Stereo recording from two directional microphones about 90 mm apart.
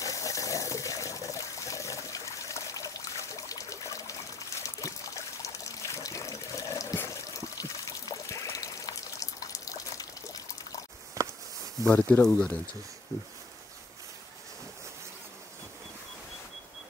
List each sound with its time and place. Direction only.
0.0 s water: 40° left (ahead or behind)
7.3 s pour: 40° left (ahead or behind)
11.2 s a sound: 35° right (ahead or behind)
12.2 s speech: 10° left (ahead or behind)